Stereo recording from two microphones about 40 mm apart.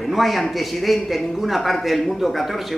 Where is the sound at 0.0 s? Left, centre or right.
Centre.